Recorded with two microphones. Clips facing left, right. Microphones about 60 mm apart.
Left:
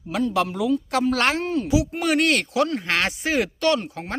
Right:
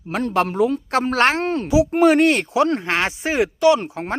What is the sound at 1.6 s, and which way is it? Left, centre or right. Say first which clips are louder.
A man's voice: right 11 dB; right.